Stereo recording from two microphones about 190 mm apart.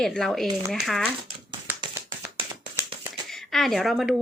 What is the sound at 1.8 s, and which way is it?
Music, 25° right (ahead or behind).